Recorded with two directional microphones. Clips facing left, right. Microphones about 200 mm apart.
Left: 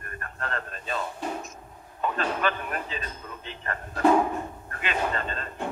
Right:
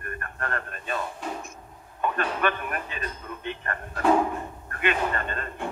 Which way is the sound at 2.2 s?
60° right (ahead or behind).